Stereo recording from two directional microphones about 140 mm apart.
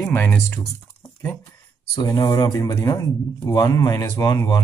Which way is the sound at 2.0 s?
25° left (ahead or behind).